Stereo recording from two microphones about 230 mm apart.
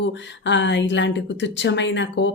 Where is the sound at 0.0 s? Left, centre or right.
Left.